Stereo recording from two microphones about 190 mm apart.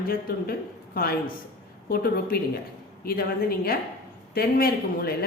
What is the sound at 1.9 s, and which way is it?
Speech, 50° left (ahead or behind).